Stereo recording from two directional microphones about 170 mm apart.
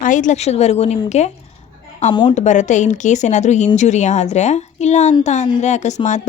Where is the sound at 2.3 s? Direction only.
45° left (ahead or behind).